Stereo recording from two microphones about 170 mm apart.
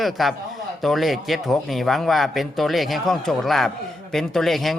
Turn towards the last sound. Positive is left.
turn(degrees=0)  # may be behind; listen again after turning